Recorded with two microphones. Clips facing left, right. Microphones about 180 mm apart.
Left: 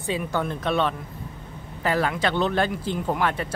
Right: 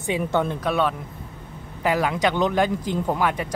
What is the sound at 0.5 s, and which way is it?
Speech, 10° right (ahead or behind).